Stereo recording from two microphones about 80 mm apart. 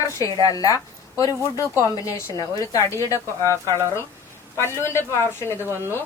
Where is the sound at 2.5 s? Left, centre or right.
Left.